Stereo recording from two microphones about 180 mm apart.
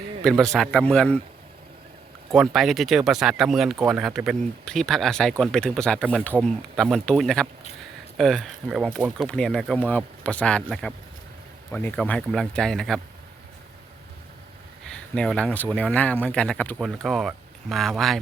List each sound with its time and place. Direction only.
0.5 s speech: 5° left (ahead or behind)
2.3 s speech: centre (ahead or behind)
14.8 s speech: 5° left (ahead or behind)